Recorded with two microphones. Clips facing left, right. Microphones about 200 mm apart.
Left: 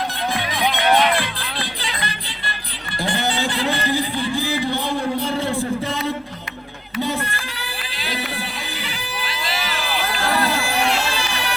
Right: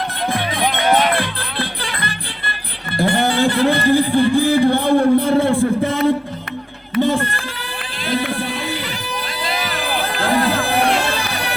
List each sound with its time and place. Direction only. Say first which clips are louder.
0.3 s music: right 3 dB; 55° right (ahead or behind)
3.0 s speech: right 7 dB; 55° right (ahead or behind)
6.9 s a sound: right 7 dB; 50° right (ahead or behind)
7.9 s music: right 8 dB; 50° right (ahead or behind)
9.2 s run: right 2 dB; 45° right (ahead or behind)